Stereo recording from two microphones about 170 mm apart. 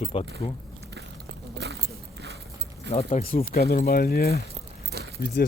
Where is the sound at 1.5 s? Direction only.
80° right.